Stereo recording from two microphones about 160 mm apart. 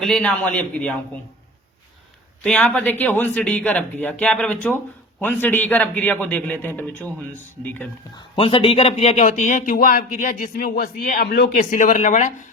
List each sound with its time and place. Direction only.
0.0 s a man's voice: 5° left (ahead or behind)
2.4 s a man's voice: 5° left (ahead or behind)
8.4 s speech: 35° left (ahead or behind)